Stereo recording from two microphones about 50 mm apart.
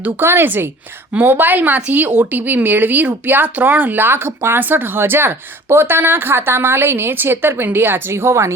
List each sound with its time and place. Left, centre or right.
0.2 s speech: right